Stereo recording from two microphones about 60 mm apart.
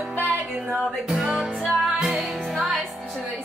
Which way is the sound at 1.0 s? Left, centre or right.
Centre.